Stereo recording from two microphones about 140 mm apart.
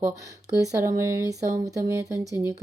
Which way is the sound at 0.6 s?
20° right (ahead or behind).